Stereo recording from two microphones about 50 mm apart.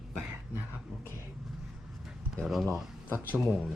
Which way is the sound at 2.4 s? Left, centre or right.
Centre.